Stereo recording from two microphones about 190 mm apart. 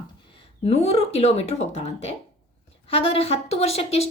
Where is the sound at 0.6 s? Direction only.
35° left (ahead or behind).